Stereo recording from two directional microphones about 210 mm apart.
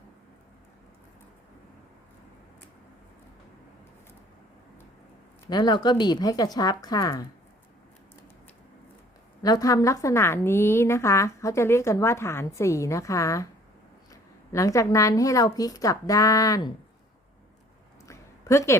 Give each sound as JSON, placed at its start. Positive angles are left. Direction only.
{"t": 5.5, "sound": "speech", "side_deg": 20}
{"t": 9.4, "sound": "a woman's voice", "side_deg": 15}
{"t": 18.1, "sound": "a sound", "side_deg": 15}